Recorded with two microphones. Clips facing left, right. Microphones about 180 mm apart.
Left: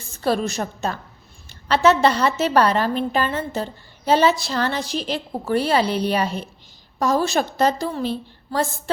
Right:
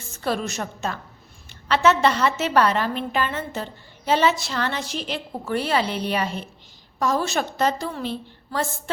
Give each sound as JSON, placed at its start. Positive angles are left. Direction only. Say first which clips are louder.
{"t": 0.1, "sound": "a woman's voice", "louder": "left 4 dB", "side_deg": 35}